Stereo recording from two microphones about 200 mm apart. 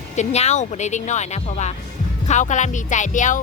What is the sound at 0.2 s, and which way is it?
Speech, 35° left (ahead or behind).